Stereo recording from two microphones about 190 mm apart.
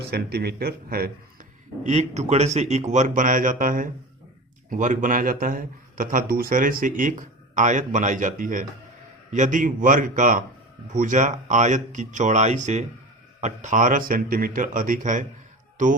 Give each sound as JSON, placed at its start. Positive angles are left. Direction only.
{"t": 0.0, "sound": "a man's voice", "side_deg": -55}